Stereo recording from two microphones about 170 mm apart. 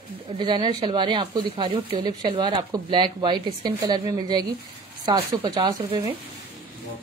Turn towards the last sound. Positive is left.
turn(degrees=-25)  # may be behind; listen again after turning